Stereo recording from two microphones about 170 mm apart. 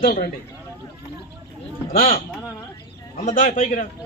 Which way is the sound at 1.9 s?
55° left (ahead or behind).